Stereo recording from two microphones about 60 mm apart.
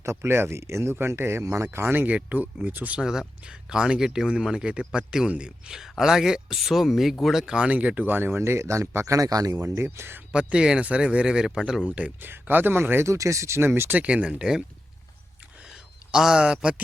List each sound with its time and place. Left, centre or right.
0.0 s speech: right
0.9 s speech: right
2.0 s speech: right
3.0 s speech: centre
7.4 s speech: centre; by 9.1 s right
9.1 s speech: right
10.3 s speech: centre
11.9 s speech: right
12.2 s speech: right
13.1 s speech: right
13.6 s speech: right
14.0 s speech: centre
15.5 s a sound: centre